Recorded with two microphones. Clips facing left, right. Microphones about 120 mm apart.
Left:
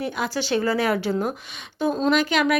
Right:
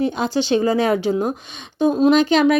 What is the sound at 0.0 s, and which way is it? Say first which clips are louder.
Speech: right 6 dB; 25° right (ahead or behind).